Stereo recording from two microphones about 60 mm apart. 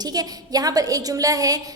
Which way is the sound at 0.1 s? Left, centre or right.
Right.